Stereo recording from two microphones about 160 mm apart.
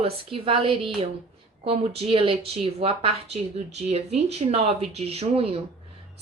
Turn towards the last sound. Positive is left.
turn(degrees=-40)  # may be behind; listen again after turning